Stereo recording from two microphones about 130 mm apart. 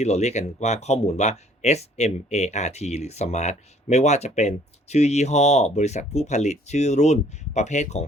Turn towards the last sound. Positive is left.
turn(degrees=65)  # may be behind; listen again after turning